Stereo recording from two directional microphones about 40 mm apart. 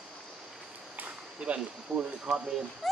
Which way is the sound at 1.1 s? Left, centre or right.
Right.